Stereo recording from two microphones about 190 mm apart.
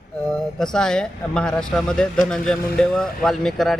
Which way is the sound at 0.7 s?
5° left (ahead or behind).